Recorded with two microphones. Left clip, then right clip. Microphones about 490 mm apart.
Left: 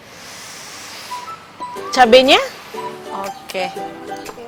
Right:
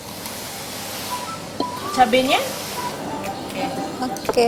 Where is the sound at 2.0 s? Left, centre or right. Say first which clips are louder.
Left 7 dB; left.